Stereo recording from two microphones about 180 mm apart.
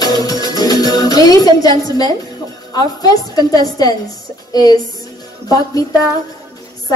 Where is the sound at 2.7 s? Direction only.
20° left (ahead or behind).